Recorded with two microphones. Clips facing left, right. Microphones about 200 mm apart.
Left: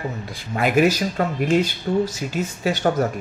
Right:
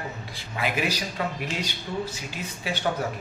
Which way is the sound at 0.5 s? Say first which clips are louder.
Left 10 dB; 45° left (ahead or behind).